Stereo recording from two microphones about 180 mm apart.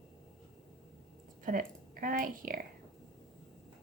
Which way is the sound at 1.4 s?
50° right (ahead or behind).